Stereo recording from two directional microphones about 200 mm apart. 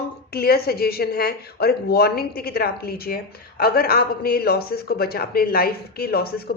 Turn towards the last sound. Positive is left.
turn(degrees=50)  # may be behind; listen again after turning